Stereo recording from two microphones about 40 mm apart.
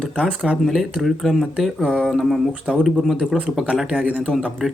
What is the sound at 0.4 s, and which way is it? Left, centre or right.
Speech, centre.